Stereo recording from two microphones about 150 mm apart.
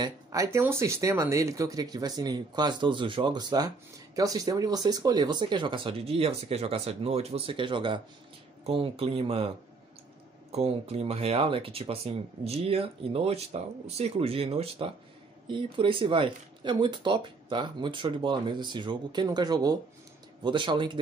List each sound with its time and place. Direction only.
0.0 s speech: 20° right (ahead or behind); by 9.5 s 40° right (ahead or behind)
10.5 s speech: 45° right (ahead or behind)